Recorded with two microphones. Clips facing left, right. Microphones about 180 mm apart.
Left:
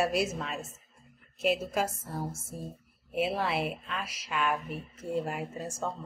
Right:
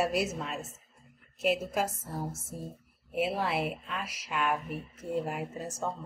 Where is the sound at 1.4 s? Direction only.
15° right (ahead or behind).